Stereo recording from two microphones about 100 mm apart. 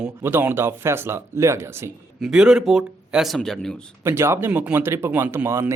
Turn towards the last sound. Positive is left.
turn(degrees=-30)  # may be behind; listen again after turning